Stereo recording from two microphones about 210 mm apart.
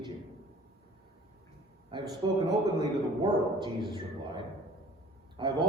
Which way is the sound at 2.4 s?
20° right (ahead or behind).